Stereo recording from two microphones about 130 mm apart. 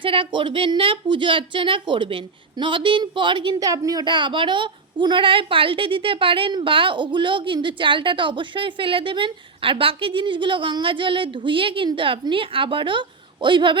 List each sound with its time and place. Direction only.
0.0 s a woman's voice: 40° right (ahead or behind)